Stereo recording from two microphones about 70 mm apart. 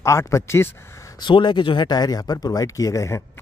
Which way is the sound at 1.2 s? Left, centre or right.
Left.